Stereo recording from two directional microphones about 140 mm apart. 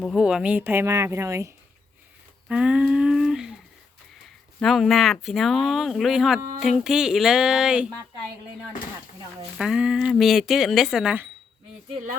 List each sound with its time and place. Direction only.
0.0 s speech: centre (ahead or behind); by 1.5 s 20° right (ahead or behind)
2.5 s a sound: 5° right (ahead or behind)
4.6 s speech: centre (ahead or behind)
9.6 s speech: 5° right (ahead or behind)